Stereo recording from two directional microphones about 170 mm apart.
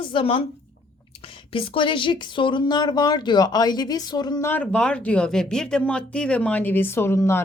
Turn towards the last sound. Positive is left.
turn(degrees=15)  # may be behind; listen again after turning